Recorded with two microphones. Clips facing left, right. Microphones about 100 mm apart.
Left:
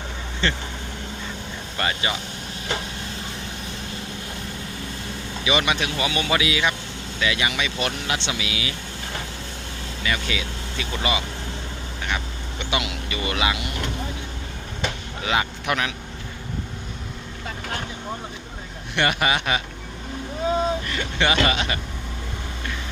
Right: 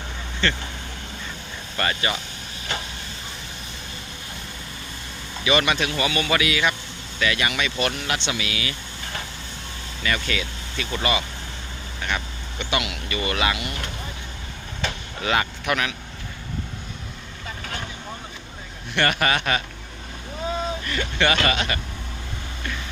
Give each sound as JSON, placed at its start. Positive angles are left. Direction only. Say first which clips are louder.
{"t": 1.8, "sound": "speech", "louder": "right 1 dB", "side_deg": 15}
{"t": 5.5, "sound": "speech", "louder": "right 1 dB", "side_deg": 15}
{"t": 10.0, "sound": "speech", "louder": "right 1 dB", "side_deg": 15}
{"t": 12.7, "sound": "speech", "louder": "right 1 dB", "side_deg": 25}
{"t": 15.2, "sound": "speech", "louder": "right 1 dB", "side_deg": 15}
{"t": 18.9, "sound": "speech", "louder": "even", "side_deg": 15}
{"t": 20.9, "sound": "speech", "louder": "even", "side_deg": 20}